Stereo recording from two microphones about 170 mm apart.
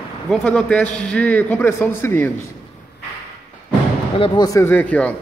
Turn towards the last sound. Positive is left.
turn(degrees=10)  # may be behind; listen again after turning